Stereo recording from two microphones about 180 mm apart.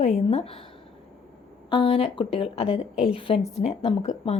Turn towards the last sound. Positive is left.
turn(degrees=35)  # may be behind; listen again after turning